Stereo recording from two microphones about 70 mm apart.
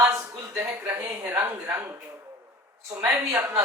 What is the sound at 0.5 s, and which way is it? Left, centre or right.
Speech, right.